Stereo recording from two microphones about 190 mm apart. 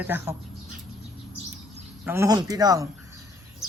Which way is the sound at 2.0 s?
10° right (ahead or behind).